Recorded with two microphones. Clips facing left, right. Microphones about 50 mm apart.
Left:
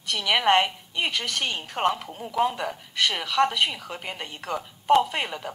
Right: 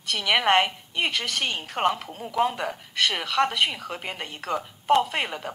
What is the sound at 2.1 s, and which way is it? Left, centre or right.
Speech, centre.